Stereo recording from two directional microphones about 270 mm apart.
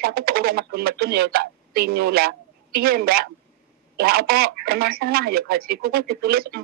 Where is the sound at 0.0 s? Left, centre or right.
Right.